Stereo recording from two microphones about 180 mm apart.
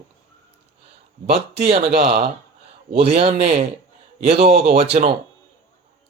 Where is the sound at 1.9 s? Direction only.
60° right (ahead or behind).